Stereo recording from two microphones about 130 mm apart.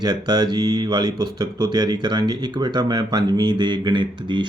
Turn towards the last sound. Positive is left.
turn(degrees=-35)  # may be behind; listen again after turning